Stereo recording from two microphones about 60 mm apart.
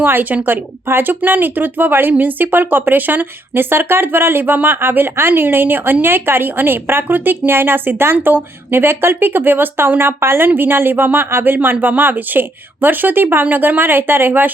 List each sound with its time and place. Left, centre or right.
0.0 s speech: right